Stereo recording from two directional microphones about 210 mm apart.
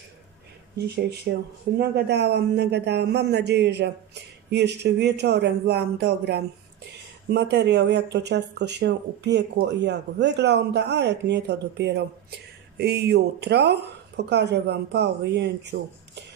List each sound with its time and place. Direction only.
1.3 s speech: 65° right (ahead or behind)
1.8 s a man's voice: 55° right (ahead or behind)